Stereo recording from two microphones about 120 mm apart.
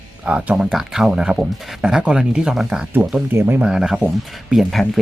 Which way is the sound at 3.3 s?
20° right (ahead or behind).